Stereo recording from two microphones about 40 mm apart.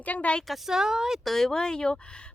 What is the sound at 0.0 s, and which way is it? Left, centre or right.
Speech, left.